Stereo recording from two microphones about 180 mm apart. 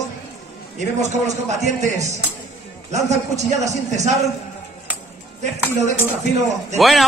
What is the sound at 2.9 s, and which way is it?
Speech, 40° right (ahead or behind).